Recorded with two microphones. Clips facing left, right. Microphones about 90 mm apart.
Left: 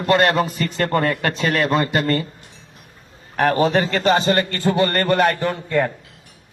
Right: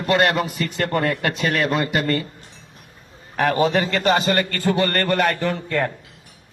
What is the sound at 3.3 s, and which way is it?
A man's voice, 35° left (ahead or behind).